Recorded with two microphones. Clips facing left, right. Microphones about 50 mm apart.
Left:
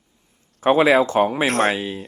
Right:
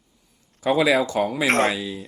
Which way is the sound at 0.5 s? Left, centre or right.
Left.